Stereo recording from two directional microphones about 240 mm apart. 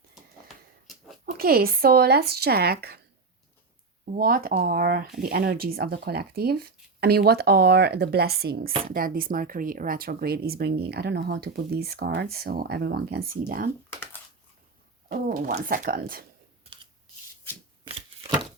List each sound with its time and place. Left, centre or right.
0.1 s a sound: centre
1.2 s speech: right
4.1 s speech: right
15.1 s speech: right